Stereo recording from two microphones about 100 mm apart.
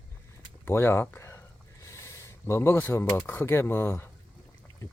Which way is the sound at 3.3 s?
20° left (ahead or behind).